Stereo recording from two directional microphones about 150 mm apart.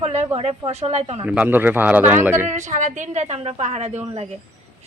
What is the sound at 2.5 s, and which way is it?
A woman's voice, 50° right (ahead or behind).